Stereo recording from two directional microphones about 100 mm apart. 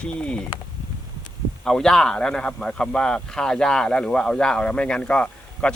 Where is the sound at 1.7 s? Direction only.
5° left (ahead or behind).